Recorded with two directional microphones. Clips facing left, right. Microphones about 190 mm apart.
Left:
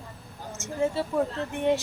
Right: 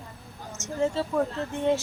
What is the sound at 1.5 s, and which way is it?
Speech, 15° left (ahead or behind).